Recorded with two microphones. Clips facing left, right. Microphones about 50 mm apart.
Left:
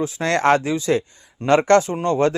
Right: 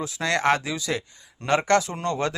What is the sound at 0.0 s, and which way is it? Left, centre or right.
Speech, left.